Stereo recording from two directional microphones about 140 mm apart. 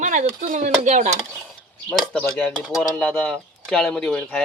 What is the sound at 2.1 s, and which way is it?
Speech, 5° left (ahead or behind).